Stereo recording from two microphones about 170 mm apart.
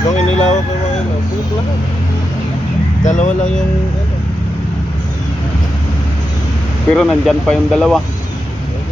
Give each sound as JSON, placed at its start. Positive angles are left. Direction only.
{"t": 0.1, "sound": "music", "side_deg": 40}
{"t": 3.0, "sound": "speech", "side_deg": 45}
{"t": 6.9, "sound": "speech", "side_deg": 0}